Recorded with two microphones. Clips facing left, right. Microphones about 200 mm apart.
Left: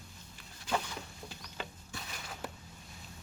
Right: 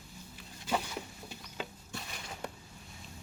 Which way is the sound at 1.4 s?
5° right (ahead or behind).